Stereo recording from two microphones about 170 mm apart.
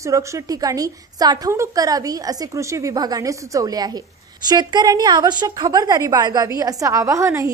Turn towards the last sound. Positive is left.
turn(degrees=-15)  # may be behind; listen again after turning